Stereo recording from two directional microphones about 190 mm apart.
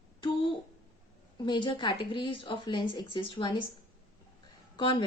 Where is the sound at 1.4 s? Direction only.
25° left (ahead or behind).